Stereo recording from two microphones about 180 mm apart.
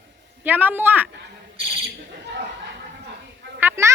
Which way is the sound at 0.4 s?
10° right (ahead or behind).